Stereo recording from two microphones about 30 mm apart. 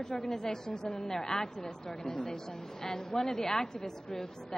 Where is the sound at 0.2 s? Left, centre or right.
Centre.